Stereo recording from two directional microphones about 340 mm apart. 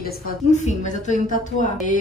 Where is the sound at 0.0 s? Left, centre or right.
Left.